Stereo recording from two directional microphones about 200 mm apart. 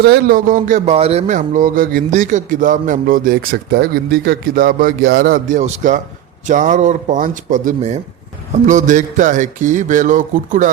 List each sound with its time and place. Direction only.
0.0 s speech: 50° right (ahead or behind)